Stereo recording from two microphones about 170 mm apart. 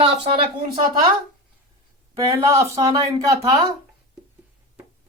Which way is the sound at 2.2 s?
20° right (ahead or behind).